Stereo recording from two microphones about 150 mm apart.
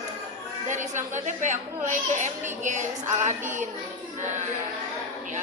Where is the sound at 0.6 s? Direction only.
55° right (ahead or behind).